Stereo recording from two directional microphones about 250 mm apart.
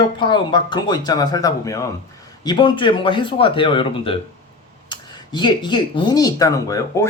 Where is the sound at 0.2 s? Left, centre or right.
Centre.